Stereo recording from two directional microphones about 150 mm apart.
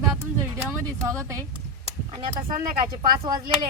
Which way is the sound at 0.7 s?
20° right (ahead or behind).